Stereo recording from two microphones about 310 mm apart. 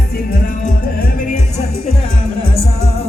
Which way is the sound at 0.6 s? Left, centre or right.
Left.